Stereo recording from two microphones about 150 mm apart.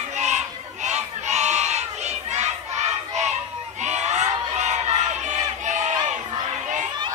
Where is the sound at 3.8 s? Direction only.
50° right (ahead or behind).